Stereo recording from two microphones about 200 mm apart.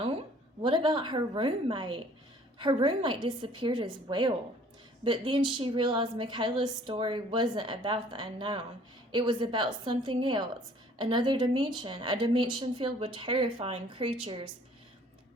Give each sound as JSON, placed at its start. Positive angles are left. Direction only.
{"t": 0.6, "sound": "a woman's voice", "side_deg": -25}